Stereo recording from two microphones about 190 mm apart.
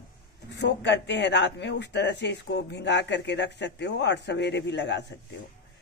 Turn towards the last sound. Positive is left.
turn(degrees=70)  # may be behind; listen again after turning